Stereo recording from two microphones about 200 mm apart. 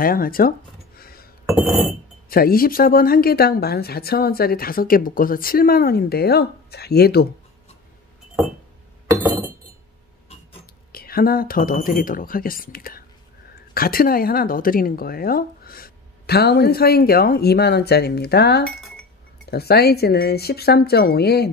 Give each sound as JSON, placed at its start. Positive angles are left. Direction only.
{"t": 0.0, "sound": "speech", "side_deg": 45}
{"t": 0.9, "sound": "a sound", "side_deg": 50}
{"t": 1.5, "sound": "glass", "side_deg": 0}
{"t": 2.2, "sound": "speech", "side_deg": 50}
{"t": 10.9, "sound": "speech", "side_deg": 50}